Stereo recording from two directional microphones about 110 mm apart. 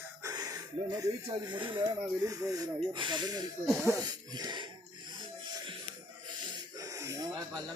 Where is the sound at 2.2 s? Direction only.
30° right (ahead or behind).